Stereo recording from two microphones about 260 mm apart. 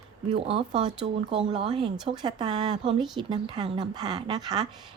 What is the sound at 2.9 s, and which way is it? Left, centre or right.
Speech, centre.